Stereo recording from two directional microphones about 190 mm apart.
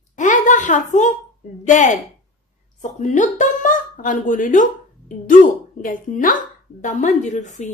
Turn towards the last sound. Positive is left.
turn(degrees=40)  # may be behind; listen again after turning